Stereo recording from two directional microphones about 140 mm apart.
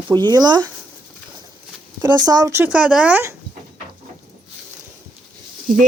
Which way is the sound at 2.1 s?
30° right (ahead or behind).